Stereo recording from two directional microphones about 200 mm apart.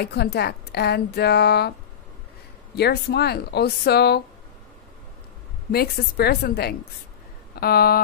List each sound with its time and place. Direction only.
0.0 s speech: 55° left (ahead or behind)
2.7 s speech: 55° left (ahead or behind)
5.7 s speech: 50° left (ahead or behind)